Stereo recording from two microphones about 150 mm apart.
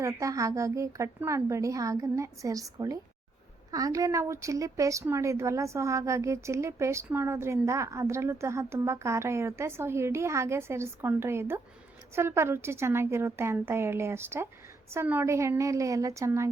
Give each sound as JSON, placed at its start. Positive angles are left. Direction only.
{"t": 0.0, "sound": "a woman's voice", "side_deg": -20}